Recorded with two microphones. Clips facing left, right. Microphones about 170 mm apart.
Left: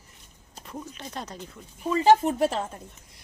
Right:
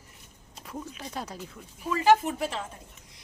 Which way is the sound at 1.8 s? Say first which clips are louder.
Left 3 dB; 30° left (ahead or behind).